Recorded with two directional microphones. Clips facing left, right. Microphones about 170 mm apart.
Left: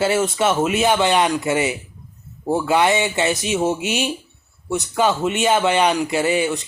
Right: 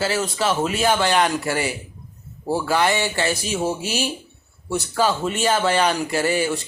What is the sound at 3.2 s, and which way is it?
Speech, 20° left (ahead or behind).